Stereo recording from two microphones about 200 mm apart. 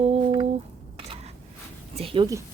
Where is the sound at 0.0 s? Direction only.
30° right (ahead or behind).